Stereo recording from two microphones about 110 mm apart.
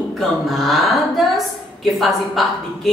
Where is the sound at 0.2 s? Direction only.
Centre (ahead or behind).